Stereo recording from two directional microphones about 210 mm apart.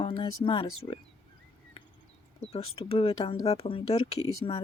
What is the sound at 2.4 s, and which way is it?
Speech, 30° left (ahead or behind).